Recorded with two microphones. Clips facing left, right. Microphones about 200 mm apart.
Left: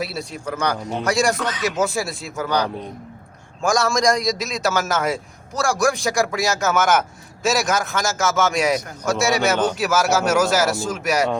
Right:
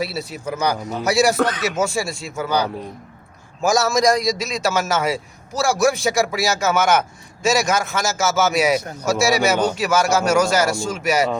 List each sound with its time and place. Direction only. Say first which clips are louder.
0.0 s a man's voice: right 2 dB; 5° right (ahead or behind)
1.4 s speech: right 6 dB; 55° right (ahead or behind)
1.6 s a man's voice: even; centre (ahead or behind)